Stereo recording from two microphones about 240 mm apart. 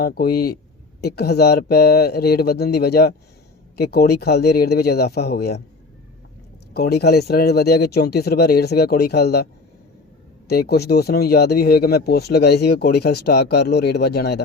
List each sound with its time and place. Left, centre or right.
0.0 s speech: left
6.7 s speech: left
10.5 s speech: left